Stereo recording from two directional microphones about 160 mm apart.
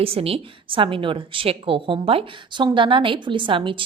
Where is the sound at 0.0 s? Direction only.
35° right (ahead or behind).